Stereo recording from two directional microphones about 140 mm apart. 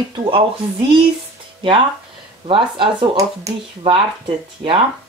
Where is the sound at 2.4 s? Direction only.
35° right (ahead or behind).